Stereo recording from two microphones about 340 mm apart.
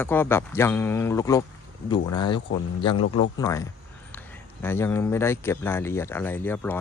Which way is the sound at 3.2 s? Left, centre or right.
Centre.